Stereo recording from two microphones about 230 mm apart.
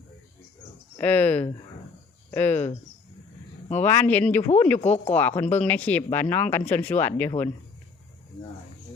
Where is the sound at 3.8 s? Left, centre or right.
Centre.